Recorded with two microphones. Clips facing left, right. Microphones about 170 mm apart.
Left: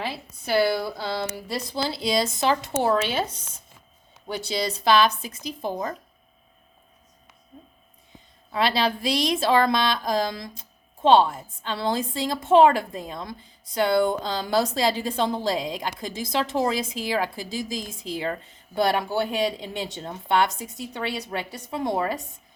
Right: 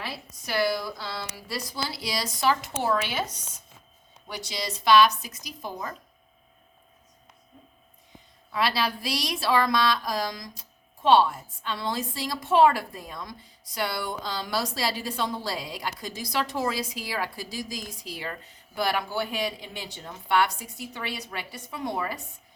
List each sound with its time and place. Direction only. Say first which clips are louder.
0.4 s a woman's voice: left 5 dB; 30° left (ahead or behind)
4.4 s a woman's voice: left 2 dB; 30° left (ahead or behind)
8.5 s a woman's voice: left 4 dB; 25° left (ahead or behind)